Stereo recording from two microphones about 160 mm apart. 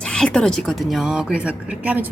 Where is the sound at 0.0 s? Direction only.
5° left (ahead or behind).